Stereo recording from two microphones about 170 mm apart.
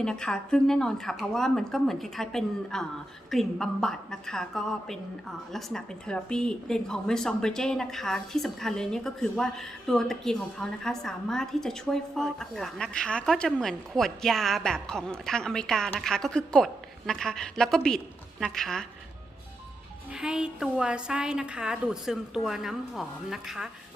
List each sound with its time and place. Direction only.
0.0 s a woman's voice: 5° left (ahead or behind)
20.1 s a woman's voice: 5° right (ahead or behind)